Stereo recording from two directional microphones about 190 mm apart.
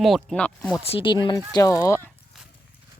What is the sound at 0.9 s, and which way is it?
Speech, 30° left (ahead or behind).